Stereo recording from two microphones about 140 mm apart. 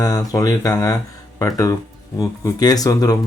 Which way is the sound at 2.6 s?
25° left (ahead or behind).